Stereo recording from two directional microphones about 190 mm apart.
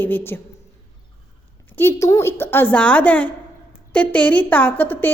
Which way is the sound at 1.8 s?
15° left (ahead or behind).